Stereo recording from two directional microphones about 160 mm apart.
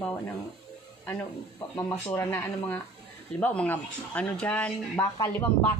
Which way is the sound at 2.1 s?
15° left (ahead or behind).